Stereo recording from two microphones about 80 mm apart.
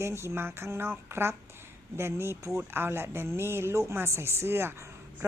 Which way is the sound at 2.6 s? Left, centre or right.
Right.